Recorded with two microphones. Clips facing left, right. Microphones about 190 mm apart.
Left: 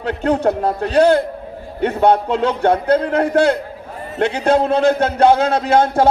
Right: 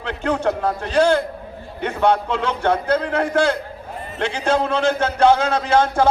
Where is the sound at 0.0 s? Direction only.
40° left (ahead or behind).